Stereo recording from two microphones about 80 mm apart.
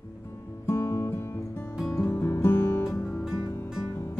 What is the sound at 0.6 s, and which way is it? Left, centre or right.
Music, left.